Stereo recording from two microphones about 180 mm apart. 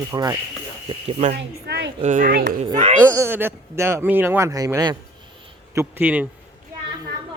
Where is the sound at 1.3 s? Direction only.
70° right (ahead or behind).